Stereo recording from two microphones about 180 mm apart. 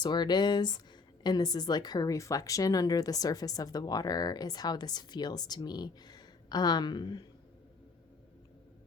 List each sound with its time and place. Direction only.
0.0 s speech: 25° left (ahead or behind)